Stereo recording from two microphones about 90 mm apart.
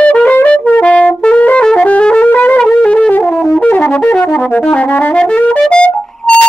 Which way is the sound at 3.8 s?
10° left (ahead or behind).